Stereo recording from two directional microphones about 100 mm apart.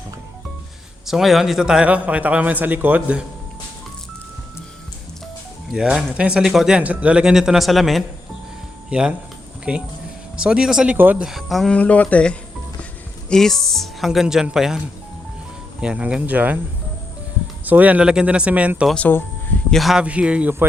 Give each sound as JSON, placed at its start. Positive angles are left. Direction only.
{"t": 1.0, "sound": "a man's voice", "side_deg": -5}
{"t": 5.7, "sound": "a man's voice", "side_deg": -5}
{"t": 8.9, "sound": "a man's voice", "side_deg": -10}
{"t": 10.9, "sound": "a man's voice", "side_deg": -15}
{"t": 11.3, "sound": "speech", "side_deg": 0}
{"t": 11.7, "sound": "speech", "side_deg": 15}
{"t": 15.8, "sound": "a man's voice", "side_deg": -10}
{"t": 17.7, "sound": "a man's voice", "side_deg": -15}
{"t": 18.9, "sound": "speech", "side_deg": 15}
{"t": 19.7, "sound": "a man's voice", "side_deg": 0}